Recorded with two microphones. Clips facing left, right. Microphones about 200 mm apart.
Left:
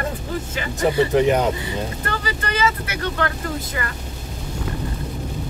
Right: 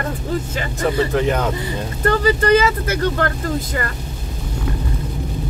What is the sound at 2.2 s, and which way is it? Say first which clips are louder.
Speech: right 8 dB; 45° right (ahead or behind).